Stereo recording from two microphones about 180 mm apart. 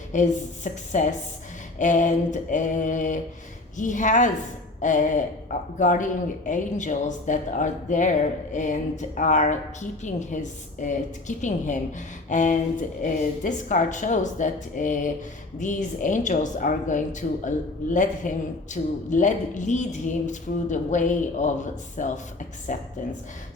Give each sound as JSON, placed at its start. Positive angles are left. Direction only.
{"t": 0.1, "sound": "speech", "side_deg": 45}